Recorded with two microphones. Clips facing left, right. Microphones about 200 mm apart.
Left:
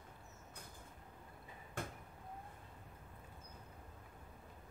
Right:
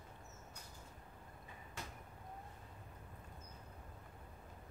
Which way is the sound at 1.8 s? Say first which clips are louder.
Left 6 dB; 55° left (ahead or behind).